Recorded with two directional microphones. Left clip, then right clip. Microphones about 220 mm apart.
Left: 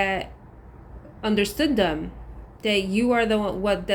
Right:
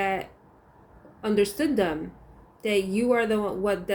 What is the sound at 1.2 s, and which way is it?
Speech, 20° left (ahead or behind).